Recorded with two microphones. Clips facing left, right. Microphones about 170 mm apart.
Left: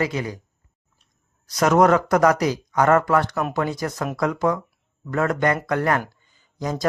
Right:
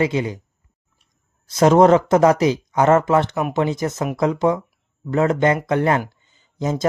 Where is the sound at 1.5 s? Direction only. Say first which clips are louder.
Right 4 dB; 25° right (ahead or behind).